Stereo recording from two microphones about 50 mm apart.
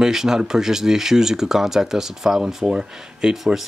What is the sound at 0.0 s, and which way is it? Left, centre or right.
Speech, centre.